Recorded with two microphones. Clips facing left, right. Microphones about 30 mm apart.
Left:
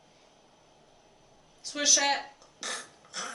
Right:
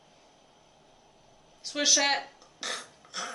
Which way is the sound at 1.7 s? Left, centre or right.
Centre.